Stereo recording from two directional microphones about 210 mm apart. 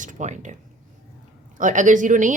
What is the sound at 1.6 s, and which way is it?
Speech, 35° right (ahead or behind).